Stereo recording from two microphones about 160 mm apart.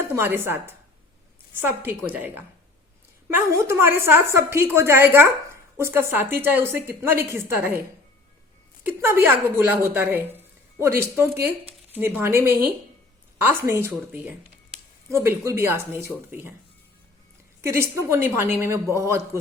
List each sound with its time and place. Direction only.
0.2 s a woman's voice: 15° right (ahead or behind)
3.2 s a woman's voice: 15° right (ahead or behind)
8.8 s a woman's voice: 15° right (ahead or behind)
17.6 s a woman's voice: 15° right (ahead or behind)